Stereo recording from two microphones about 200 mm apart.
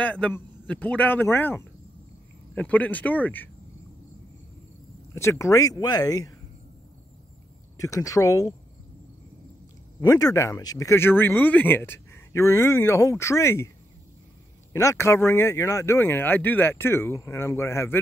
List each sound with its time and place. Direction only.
0.0 s speech: 5° left (ahead or behind)
5.1 s speech: 15° left (ahead or behind)
7.7 s speech: 15° left (ahead or behind)
9.9 s speech: 20° left (ahead or behind)
14.7 s speech: 15° left (ahead or behind)